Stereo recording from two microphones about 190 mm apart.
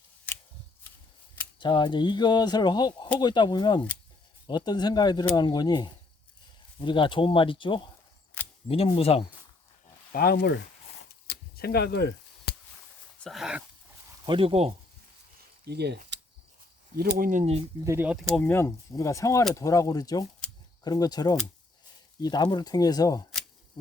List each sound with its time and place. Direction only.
1.5 s speech: 25° left (ahead or behind)
10.1 s speech: 50° left (ahead or behind)
11.3 s chop: 55° left (ahead or behind)
13.2 s dog: centre (ahead or behind)
14.3 s speech: 30° right (ahead or behind)
15.6 s speech: 60° right (ahead or behind)
17.0 s speech: 50° right (ahead or behind)
17.8 s speech: 10° right (ahead or behind)
18.3 s speech: 10° left (ahead or behind)